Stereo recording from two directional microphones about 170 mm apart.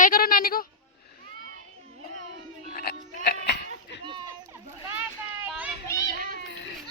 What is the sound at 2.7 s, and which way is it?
Music, 65° left (ahead or behind).